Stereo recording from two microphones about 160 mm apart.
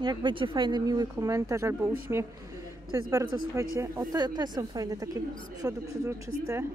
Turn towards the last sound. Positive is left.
turn(degrees=-15)  # may be behind; listen again after turning